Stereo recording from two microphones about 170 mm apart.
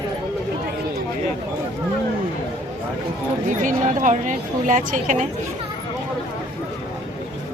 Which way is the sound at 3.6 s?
45° right (ahead or behind).